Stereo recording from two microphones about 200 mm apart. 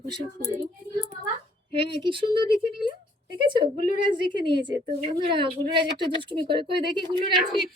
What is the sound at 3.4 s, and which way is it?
Speech, 25° right (ahead or behind).